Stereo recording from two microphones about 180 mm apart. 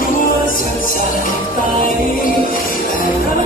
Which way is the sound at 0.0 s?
50° left (ahead or behind).